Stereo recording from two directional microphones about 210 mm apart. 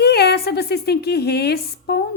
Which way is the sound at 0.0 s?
50° left (ahead or behind).